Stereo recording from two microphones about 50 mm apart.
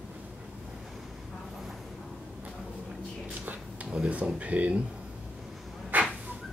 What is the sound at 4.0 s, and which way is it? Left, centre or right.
Speech, right.